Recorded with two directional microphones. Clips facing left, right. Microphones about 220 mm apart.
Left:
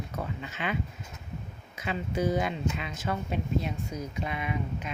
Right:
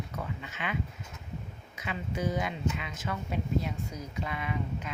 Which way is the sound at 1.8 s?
35° left (ahead or behind).